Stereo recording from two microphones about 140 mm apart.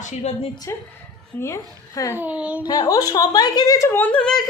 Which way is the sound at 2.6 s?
30° left (ahead or behind).